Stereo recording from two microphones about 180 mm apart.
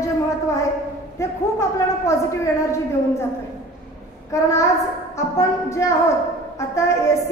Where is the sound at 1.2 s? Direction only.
15° left (ahead or behind).